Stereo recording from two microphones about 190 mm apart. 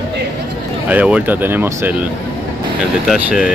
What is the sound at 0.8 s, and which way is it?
Speech, 5° right (ahead or behind).